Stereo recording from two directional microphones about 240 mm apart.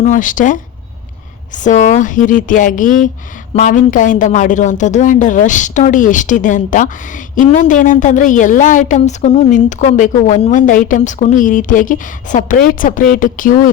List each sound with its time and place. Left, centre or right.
0.0 s a woman's voice: left